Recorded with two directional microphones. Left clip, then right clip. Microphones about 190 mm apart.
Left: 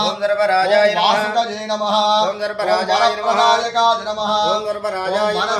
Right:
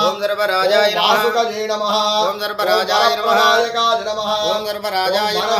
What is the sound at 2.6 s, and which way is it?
Mantra, 20° right (ahead or behind).